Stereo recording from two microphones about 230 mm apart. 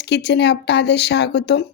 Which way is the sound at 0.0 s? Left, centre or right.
Left.